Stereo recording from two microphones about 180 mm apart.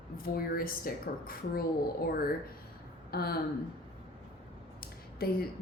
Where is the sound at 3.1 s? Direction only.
60° left (ahead or behind).